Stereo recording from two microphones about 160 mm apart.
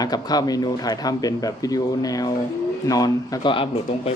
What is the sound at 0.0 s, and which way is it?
Speech, 25° left (ahead or behind).